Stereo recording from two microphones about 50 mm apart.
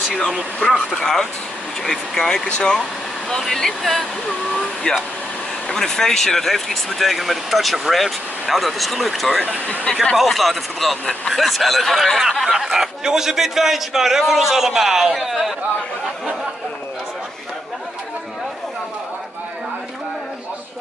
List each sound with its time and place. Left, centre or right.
0.6 s speech: left
0.9 s speech: centre
3.3 s a man's voice: centre